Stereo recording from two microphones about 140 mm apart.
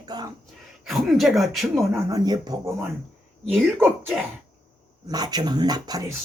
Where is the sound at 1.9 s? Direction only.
25° right (ahead or behind).